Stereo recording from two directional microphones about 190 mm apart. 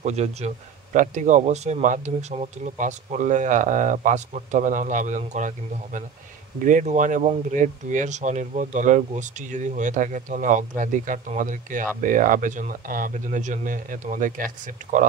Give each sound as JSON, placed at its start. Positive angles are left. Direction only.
{"t": 0.0, "sound": "speech", "side_deg": -35}
{"t": 6.6, "sound": "speech", "side_deg": -40}